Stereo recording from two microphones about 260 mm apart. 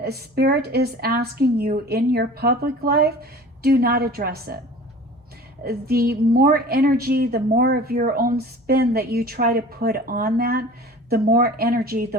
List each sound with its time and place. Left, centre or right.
0.0 s a woman's voice: right
5.6 s a woman's voice: right